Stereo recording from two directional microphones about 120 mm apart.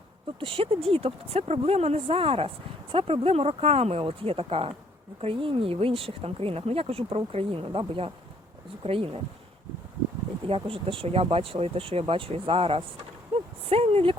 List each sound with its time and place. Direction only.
0.3 s speech: 50° right (ahead or behind)
10.4 s speech: 50° right (ahead or behind)